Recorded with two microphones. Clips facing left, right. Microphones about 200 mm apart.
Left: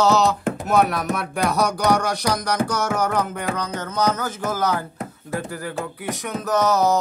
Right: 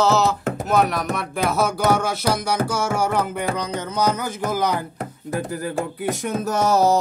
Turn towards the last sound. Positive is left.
turn(degrees=-30)  # may be behind; listen again after turning